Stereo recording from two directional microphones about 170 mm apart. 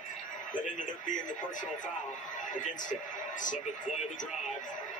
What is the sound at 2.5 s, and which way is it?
Speech, 50° left (ahead or behind).